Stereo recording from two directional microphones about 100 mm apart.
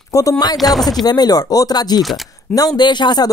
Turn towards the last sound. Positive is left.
turn(degrees=45)  # may be behind; listen again after turning